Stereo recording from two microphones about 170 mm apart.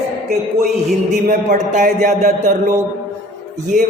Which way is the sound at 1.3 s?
50° right (ahead or behind).